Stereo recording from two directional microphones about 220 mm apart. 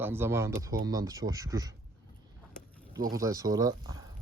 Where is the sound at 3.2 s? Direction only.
15° right (ahead or behind).